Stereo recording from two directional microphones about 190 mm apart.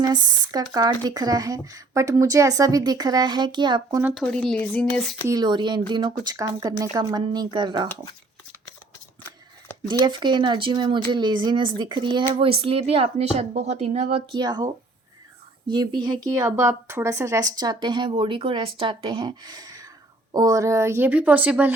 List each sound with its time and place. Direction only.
0.0 s speech: 20° right (ahead or behind)
4.2 s speech: 5° left (ahead or behind)
5.3 s speech: 25° right (ahead or behind)
10.0 s speech: 25° right (ahead or behind)
14.3 s speech: 20° right (ahead or behind)
15.7 s speech: 25° right (ahead or behind); by 21.7 s 5° right (ahead or behind)